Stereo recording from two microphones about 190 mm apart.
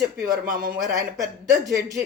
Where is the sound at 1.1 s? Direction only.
15° right (ahead or behind).